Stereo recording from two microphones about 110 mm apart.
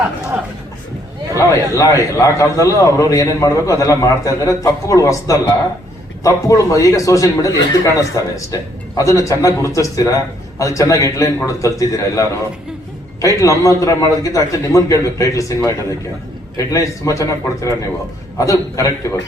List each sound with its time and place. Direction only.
0.3 s a sound: 10° right (ahead or behind)
1.4 s a man's voice: 30° left (ahead or behind)
13.2 s a man's voice: 30° left (ahead or behind)